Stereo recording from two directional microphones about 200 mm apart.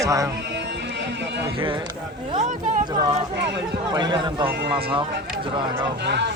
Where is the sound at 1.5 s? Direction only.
25° right (ahead or behind).